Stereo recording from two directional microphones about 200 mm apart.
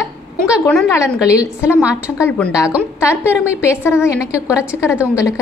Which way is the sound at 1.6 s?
5° right (ahead or behind).